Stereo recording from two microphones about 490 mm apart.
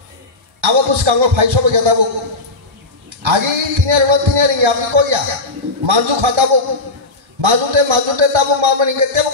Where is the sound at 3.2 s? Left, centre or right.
Right.